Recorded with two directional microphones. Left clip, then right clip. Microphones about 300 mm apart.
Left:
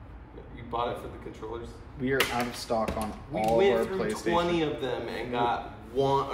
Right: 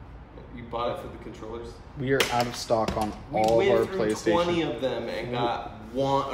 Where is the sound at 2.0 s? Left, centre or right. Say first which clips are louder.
Right 3 dB; right.